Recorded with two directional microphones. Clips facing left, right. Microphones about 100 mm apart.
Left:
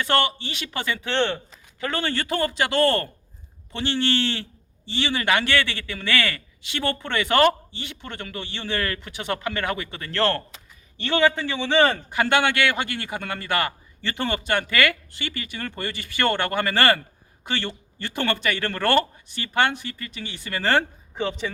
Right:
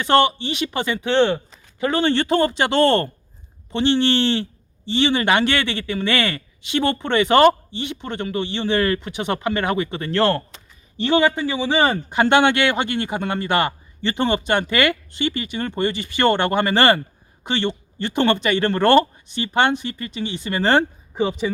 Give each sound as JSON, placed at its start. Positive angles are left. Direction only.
{"t": 0.0, "sound": "a man's voice", "side_deg": -20}
{"t": 12.1, "sound": "a man's voice", "side_deg": -25}
{"t": 21.2, "sound": "a man's voice", "side_deg": -10}